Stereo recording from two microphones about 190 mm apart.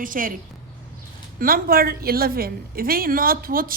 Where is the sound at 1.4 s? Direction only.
50° right (ahead or behind).